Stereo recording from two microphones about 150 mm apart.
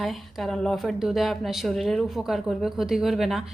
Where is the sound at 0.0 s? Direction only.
Centre (ahead or behind).